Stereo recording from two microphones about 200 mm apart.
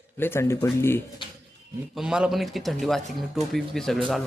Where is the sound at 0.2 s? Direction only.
10° left (ahead or behind).